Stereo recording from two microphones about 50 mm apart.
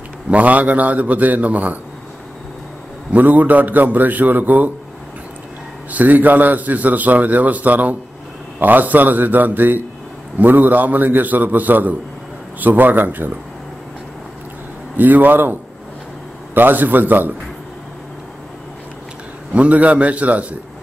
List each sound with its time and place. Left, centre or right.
0.3 s a man's voice: right
3.1 s a man's voice: right
5.9 s a man's voice: right
15.0 s a man's voice: right
16.5 s a man's voice: right
19.5 s a man's voice: right